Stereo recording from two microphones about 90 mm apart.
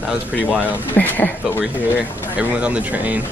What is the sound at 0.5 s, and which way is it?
Speech, 20° right (ahead or behind).